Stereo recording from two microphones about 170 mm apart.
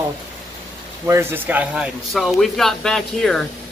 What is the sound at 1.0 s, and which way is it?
Speech, 15° right (ahead or behind).